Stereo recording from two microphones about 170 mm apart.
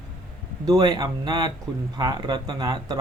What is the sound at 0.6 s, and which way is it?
Speech, 25° right (ahead or behind).